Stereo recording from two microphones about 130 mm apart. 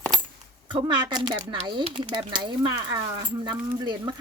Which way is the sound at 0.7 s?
35° right (ahead or behind).